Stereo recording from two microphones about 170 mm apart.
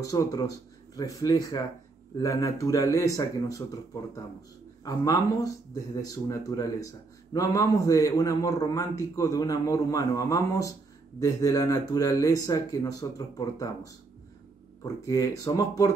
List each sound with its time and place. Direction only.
0.0 s a man's voice: 20° left (ahead or behind)
4.8 s a man's voice: 20° left (ahead or behind)
14.8 s a man's voice: 20° left (ahead or behind)